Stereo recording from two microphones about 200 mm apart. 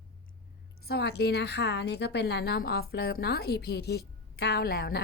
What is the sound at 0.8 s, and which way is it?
A woman's voice, 55° left (ahead or behind).